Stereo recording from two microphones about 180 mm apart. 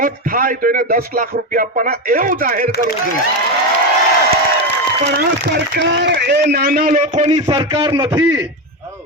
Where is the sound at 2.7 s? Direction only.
65° right (ahead or behind).